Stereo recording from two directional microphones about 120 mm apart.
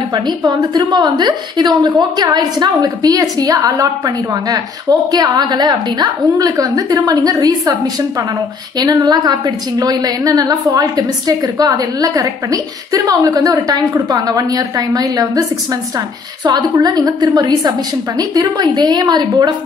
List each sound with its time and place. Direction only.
0.1 s a woman's voice: 35° right (ahead or behind)
8.7 s a woman's voice: 35° right (ahead or behind)
16.4 s a woman's voice: 35° right (ahead or behind)